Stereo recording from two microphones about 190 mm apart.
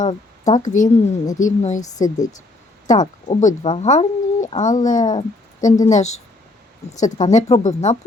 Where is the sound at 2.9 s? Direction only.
35° left (ahead or behind).